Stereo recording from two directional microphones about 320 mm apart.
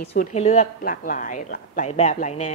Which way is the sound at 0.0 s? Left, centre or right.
Left.